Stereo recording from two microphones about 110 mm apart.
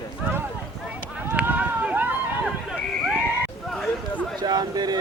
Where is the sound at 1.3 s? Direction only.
15° right (ahead or behind).